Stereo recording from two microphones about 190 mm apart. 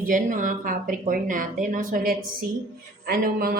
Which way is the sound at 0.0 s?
45° right (ahead or behind).